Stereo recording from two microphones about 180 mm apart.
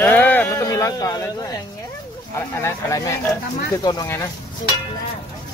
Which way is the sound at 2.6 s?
15° left (ahead or behind).